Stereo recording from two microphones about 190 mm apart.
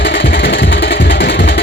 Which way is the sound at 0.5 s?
70° left (ahead or behind).